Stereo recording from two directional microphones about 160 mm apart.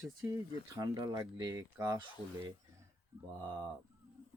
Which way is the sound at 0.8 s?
25° right (ahead or behind).